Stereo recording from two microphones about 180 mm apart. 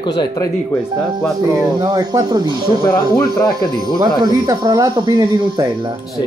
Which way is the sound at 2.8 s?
25° left (ahead or behind).